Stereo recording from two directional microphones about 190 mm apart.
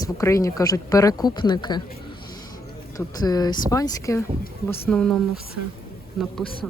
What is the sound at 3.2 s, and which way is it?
Speech, 20° left (ahead or behind).